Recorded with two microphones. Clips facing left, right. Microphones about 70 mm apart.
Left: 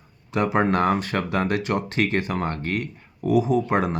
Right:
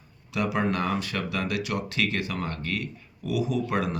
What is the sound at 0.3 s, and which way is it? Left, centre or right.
Speech, left.